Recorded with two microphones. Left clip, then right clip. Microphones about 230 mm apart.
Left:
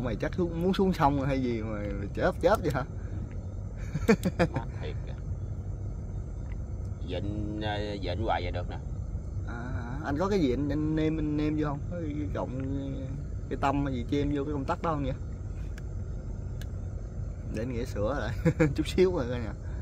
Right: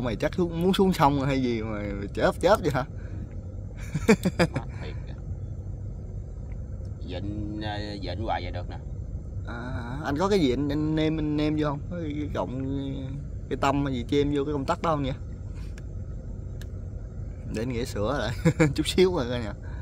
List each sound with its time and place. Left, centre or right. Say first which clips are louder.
0.0 s speech: right 4 dB; right
3.9 s a sound: right 4 dB; right
7.1 s speech: even; centre
9.5 s speech: right 4 dB; right
17.5 s speech: right 4 dB; right